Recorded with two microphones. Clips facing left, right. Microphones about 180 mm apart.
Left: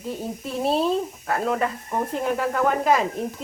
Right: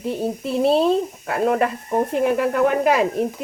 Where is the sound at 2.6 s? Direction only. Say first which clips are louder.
Right 2 dB; 65° right (ahead or behind).